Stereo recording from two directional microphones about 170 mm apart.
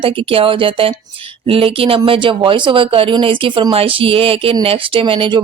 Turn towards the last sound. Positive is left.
turn(degrees=-30)  # may be behind; listen again after turning